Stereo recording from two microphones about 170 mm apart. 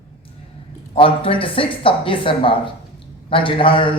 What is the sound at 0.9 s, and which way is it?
A man's voice, 30° left (ahead or behind).